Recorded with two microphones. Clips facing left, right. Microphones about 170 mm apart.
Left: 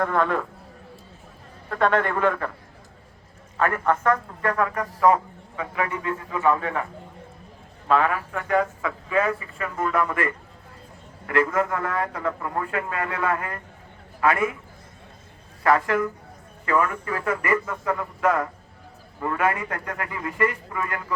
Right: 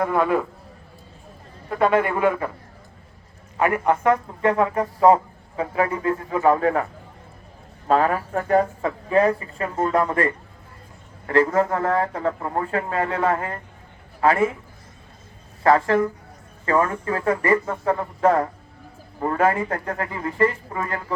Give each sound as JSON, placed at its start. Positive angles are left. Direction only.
{"t": 0.0, "sound": "a man's voice", "side_deg": -10}
{"t": 1.7, "sound": "a man's voice", "side_deg": -10}
{"t": 3.6, "sound": "speech", "side_deg": -15}
{"t": 7.9, "sound": "a man's voice", "side_deg": -40}
{"t": 15.6, "sound": "speech", "side_deg": -30}